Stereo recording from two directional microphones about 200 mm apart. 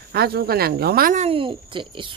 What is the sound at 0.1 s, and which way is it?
Speech, 50° right (ahead or behind).